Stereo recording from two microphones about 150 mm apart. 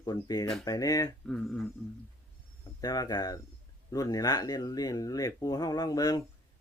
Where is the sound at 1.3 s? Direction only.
Centre (ahead or behind).